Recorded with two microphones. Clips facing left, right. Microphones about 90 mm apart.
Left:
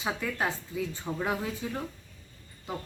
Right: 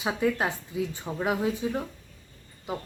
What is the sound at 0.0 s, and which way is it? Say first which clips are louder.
A woman's voice: right 5 dB; 15° right (ahead or behind).